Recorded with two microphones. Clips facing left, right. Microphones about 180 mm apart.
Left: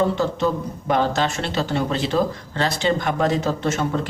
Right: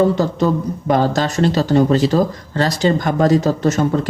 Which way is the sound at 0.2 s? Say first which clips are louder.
Right 4 dB; 40° right (ahead or behind).